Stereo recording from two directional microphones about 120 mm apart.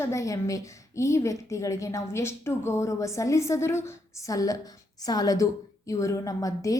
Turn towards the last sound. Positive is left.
turn(degrees=30)  # may be behind; listen again after turning